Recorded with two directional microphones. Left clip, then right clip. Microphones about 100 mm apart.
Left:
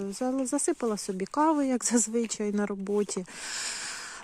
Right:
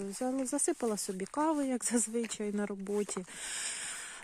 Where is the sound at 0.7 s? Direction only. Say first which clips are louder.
Left 4 dB; 25° right (ahead or behind).